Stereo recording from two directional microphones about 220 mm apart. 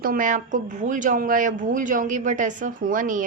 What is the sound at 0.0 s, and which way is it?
Speech, 40° right (ahead or behind).